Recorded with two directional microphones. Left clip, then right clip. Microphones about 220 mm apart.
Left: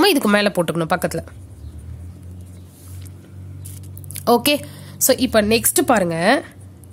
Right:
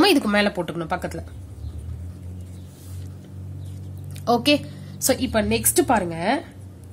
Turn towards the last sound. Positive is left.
turn(degrees=45)  # may be behind; listen again after turning